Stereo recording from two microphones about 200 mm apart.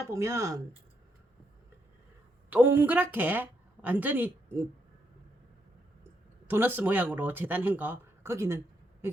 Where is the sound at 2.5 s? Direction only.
10° right (ahead or behind).